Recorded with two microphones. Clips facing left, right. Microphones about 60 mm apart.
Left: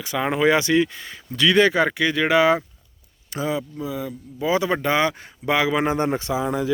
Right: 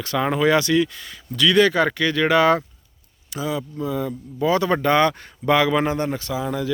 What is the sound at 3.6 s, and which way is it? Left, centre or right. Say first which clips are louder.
Speech: right 3 dB; centre.